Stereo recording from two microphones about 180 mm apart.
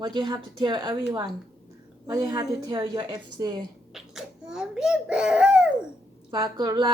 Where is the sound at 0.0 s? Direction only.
25° right (ahead or behind).